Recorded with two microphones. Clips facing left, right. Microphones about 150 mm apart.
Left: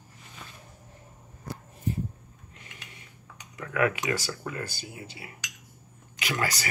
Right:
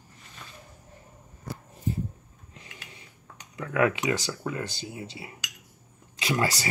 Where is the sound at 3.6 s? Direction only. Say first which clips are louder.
Right 2 dB; 25° right (ahead or behind).